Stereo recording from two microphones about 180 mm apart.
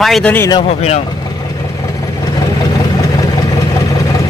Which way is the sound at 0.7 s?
35° left (ahead or behind).